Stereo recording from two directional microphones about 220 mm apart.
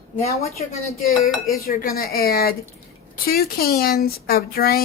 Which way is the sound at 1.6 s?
40° left (ahead or behind).